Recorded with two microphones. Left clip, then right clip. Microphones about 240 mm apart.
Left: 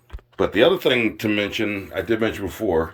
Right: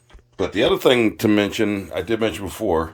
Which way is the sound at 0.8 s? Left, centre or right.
Right.